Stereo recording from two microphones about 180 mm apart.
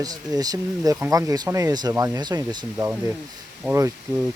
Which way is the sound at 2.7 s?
10° right (ahead or behind).